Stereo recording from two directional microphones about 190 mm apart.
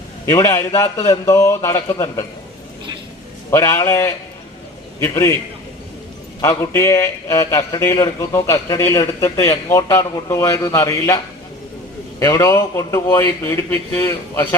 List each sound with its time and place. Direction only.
0.3 s a man's voice: 15° left (ahead or behind)
3.5 s a man's voice: 15° left (ahead or behind)
6.4 s a man's voice: 15° left (ahead or behind)
12.2 s a man's voice: 15° left (ahead or behind)